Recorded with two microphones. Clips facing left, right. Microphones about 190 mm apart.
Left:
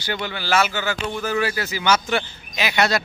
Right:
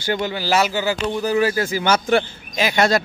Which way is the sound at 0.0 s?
45° right (ahead or behind).